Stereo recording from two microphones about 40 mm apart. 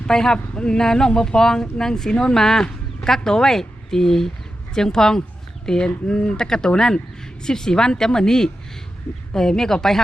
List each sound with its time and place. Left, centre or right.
0.1 s speech: centre
0.3 s speech: left
0.8 s speech: centre